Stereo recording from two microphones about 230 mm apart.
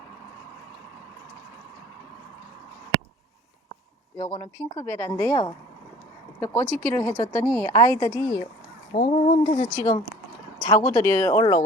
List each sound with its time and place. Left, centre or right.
4.2 s speech: centre
9.0 s speech: left; by 11.6 s centre